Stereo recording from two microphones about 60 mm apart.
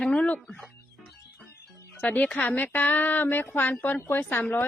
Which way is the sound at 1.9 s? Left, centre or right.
Left.